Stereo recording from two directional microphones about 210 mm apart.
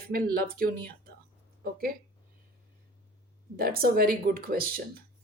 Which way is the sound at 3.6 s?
45° right (ahead or behind).